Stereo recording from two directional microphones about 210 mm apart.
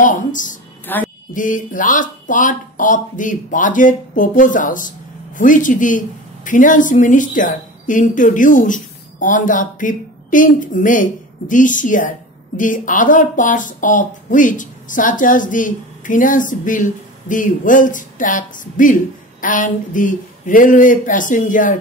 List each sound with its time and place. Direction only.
0.0 s a woman's voice: 40° left (ahead or behind)
0.9 s a sound: 10° left (ahead or behind)
1.3 s speech: 40° left (ahead or behind)